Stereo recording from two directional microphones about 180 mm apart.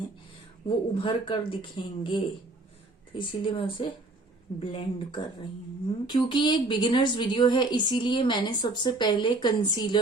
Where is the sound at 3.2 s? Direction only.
25° left (ahead or behind).